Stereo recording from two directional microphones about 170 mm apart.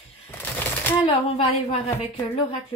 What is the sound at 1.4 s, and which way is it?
Speech, 35° left (ahead or behind).